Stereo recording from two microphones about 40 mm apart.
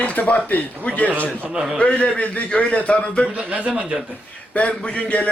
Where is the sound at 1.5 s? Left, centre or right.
Centre.